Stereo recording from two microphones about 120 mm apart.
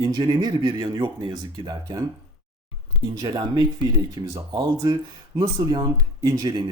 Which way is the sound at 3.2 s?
40° right (ahead or behind).